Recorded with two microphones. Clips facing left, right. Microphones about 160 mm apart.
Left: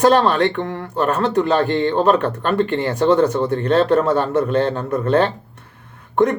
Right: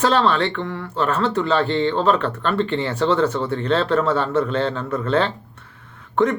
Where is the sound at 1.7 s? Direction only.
45° left (ahead or behind).